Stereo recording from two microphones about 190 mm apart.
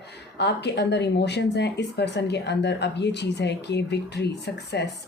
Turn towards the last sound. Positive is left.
turn(degrees=60)  # may be behind; listen again after turning